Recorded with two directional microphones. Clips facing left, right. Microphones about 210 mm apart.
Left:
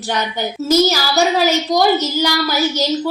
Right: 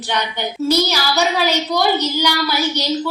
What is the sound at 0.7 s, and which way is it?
A woman's voice, 45° left (ahead or behind).